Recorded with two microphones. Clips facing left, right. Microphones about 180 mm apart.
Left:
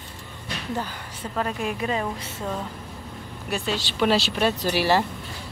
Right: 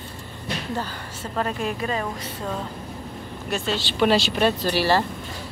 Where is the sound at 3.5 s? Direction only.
10° left (ahead or behind).